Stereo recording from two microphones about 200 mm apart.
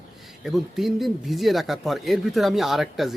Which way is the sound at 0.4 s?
Centre (ahead or behind).